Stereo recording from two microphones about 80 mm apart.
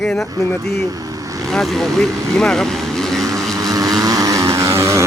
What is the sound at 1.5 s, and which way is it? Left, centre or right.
Speech, centre.